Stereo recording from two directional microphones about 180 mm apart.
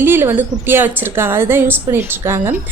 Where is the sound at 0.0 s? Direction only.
15° right (ahead or behind).